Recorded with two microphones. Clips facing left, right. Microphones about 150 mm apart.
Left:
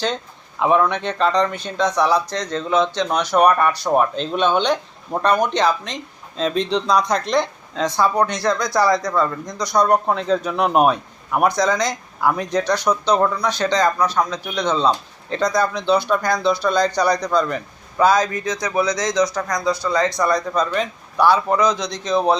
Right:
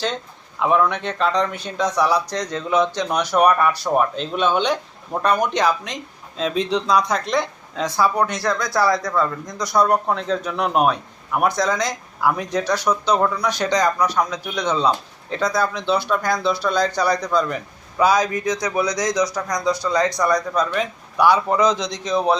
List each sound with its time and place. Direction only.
0.6 s speech: centre (ahead or behind)